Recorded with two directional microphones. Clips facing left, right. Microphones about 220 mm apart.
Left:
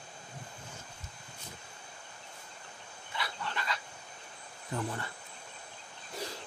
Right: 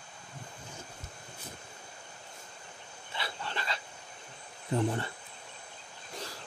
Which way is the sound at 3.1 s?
30° right (ahead or behind).